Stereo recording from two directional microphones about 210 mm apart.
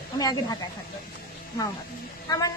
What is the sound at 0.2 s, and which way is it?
Speech, 20° left (ahead or behind).